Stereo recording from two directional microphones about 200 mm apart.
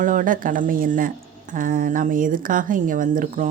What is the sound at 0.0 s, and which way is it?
Speech, 40° right (ahead or behind).